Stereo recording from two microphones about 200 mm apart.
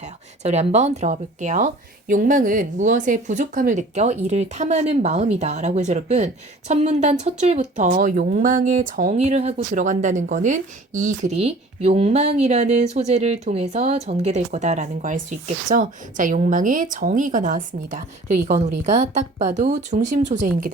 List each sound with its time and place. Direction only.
0.0 s speech: 35° right (ahead or behind)